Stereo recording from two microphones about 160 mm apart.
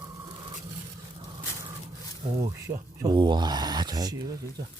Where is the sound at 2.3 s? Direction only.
20° right (ahead or behind).